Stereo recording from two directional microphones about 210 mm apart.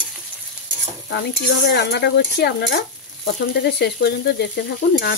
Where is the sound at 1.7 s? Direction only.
50° left (ahead or behind).